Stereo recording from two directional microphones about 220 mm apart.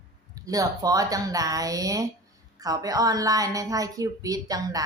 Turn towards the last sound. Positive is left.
turn(degrees=-15)  # may be behind; listen again after turning